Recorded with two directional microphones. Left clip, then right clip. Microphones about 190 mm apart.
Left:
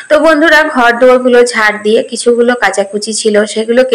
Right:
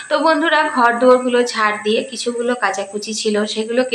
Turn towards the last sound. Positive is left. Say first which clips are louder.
# left 9 dB
turn(degrees=30)  # may be behind; listen again after turning